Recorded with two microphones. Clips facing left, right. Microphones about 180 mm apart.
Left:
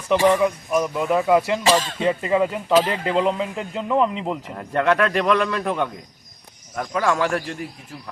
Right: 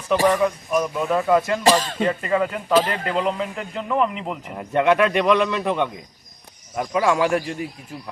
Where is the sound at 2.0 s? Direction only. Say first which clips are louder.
Left 1 dB; 15° left (ahead or behind).